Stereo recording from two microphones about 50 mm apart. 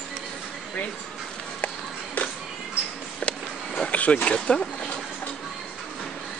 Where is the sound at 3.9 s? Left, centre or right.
Left.